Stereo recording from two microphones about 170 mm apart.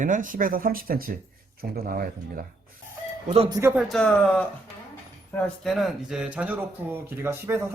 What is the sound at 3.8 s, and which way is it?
Speech, 5° left (ahead or behind).